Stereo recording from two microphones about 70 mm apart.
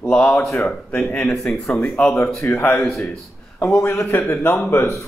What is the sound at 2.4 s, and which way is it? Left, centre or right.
Speech, left.